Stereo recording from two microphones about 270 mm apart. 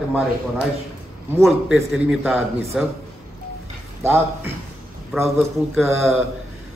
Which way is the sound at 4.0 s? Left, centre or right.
Centre.